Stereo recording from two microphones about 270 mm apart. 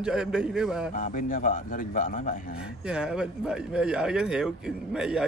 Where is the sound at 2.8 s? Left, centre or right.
Centre.